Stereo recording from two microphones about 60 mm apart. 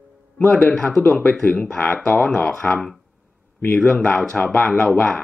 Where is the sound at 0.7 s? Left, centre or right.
Centre.